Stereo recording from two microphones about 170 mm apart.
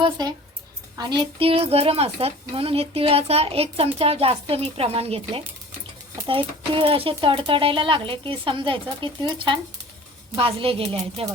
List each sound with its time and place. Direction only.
0.0 s speech: 25° right (ahead or behind)